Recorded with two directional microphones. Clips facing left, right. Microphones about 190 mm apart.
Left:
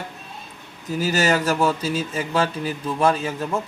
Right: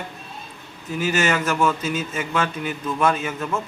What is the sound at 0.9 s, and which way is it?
Speech, 35° left (ahead or behind).